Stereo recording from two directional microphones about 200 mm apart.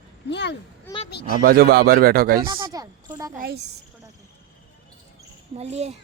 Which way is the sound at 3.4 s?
50° right (ahead or behind).